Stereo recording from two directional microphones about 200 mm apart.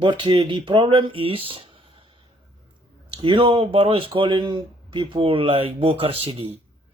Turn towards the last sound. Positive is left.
turn(degrees=-30)  # may be behind; listen again after turning